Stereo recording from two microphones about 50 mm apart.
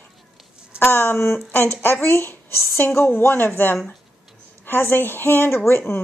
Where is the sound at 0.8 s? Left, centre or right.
Left.